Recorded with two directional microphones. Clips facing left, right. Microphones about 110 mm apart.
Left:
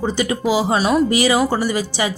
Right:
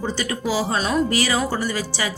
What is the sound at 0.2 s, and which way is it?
Speech, 15° left (ahead or behind).